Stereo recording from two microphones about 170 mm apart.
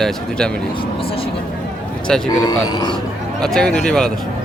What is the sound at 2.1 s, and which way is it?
Speech, 5° left (ahead or behind).